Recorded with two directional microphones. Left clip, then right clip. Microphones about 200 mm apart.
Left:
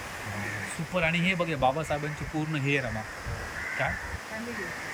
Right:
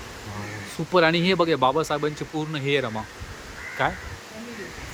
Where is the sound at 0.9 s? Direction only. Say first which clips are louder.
Right 8 dB; 25° right (ahead or behind).